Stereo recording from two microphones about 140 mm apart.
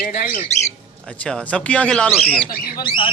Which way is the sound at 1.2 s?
10° left (ahead or behind).